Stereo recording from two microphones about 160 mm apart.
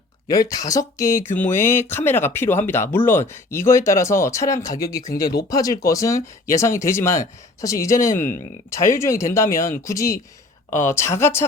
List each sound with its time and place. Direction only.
0.3 s speech: 20° left (ahead or behind)